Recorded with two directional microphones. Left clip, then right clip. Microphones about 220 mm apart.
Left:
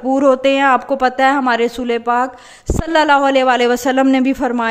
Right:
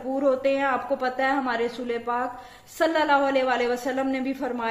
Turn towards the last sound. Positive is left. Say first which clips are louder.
# left 12 dB
turn(degrees=50)  # may be behind; listen again after turning